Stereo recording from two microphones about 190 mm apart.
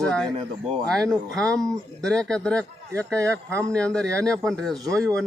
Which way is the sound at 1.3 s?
5° left (ahead or behind).